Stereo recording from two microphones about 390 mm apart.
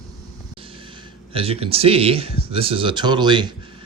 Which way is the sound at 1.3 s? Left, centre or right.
Centre.